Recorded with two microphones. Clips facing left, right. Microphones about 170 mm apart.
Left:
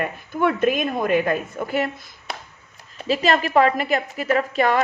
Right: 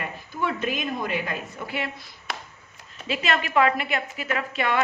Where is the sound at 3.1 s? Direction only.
40° left (ahead or behind).